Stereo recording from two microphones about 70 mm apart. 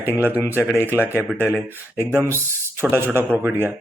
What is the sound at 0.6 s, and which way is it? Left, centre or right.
Speech, left.